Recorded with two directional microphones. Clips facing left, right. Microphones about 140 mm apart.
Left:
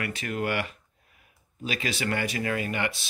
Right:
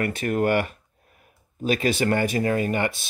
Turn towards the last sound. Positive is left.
turn(degrees=-45)  # may be behind; listen again after turning